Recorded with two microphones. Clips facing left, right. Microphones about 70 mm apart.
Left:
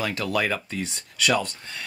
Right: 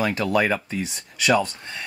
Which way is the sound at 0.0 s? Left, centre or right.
Right.